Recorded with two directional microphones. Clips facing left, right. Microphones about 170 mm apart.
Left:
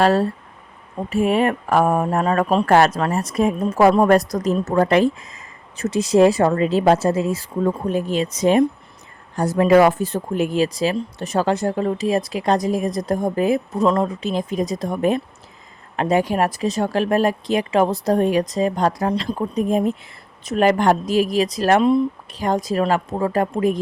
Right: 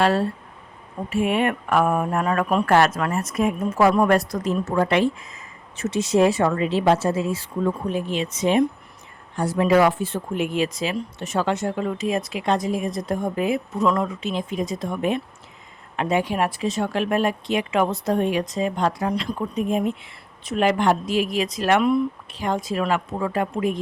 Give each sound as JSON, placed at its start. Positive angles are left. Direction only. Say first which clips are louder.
{"t": 0.0, "sound": "a woman's voice", "louder": "left 3 dB", "side_deg": 40}
{"t": 22.3, "sound": "a woman's voice", "louder": "left 4 dB", "side_deg": 40}